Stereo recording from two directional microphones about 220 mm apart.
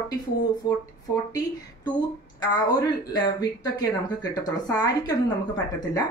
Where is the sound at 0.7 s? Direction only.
20° left (ahead or behind).